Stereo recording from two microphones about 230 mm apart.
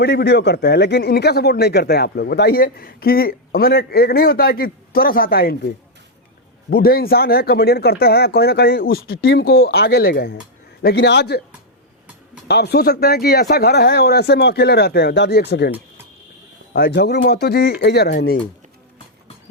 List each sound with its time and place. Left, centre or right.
0.0 s speech: left
6.7 s speech: left
12.5 s speech: left